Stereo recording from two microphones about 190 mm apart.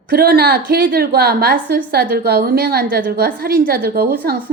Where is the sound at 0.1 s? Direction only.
55° right (ahead or behind).